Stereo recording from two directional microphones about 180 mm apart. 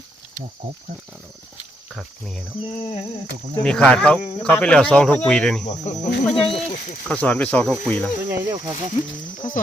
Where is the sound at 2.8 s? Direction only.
35° left (ahead or behind).